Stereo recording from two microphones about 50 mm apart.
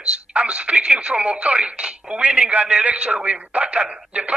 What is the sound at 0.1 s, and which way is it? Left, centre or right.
A woman's voice, right.